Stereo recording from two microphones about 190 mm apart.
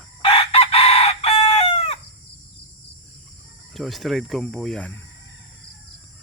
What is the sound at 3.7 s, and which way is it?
Speech, centre (ahead or behind).